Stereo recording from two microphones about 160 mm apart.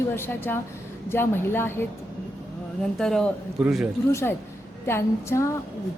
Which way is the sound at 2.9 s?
Centre (ahead or behind).